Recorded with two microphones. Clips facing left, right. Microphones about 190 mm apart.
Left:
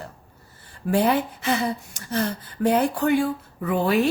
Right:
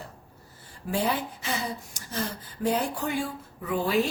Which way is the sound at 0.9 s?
60° left (ahead or behind).